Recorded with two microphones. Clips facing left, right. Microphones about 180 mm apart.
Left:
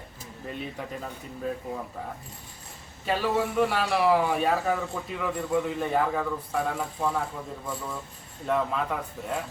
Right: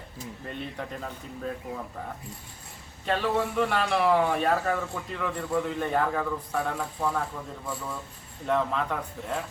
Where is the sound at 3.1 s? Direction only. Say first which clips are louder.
Even; 5° left (ahead or behind).